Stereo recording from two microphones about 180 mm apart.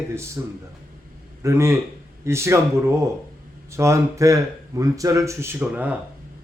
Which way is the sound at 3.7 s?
15° right (ahead or behind).